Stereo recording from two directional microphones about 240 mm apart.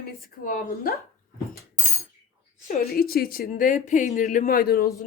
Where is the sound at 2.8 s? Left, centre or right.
Left.